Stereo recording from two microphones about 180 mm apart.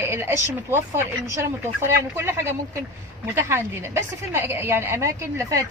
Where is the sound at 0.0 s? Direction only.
15° right (ahead or behind).